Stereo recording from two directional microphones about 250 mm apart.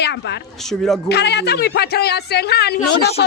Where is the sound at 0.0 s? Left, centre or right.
Left.